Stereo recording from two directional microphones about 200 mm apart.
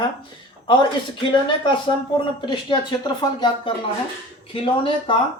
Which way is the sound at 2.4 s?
25° left (ahead or behind).